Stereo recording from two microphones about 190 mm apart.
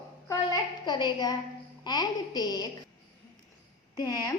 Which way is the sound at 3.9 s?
20° left (ahead or behind).